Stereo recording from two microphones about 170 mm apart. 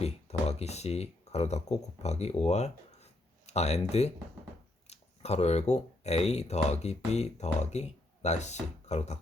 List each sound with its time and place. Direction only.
0.0 s speech: 40° left (ahead or behind)